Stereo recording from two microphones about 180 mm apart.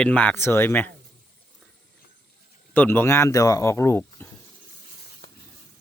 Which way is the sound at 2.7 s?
10° left (ahead or behind).